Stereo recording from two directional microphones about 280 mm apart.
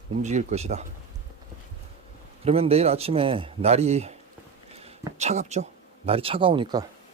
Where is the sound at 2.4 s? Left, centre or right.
Right.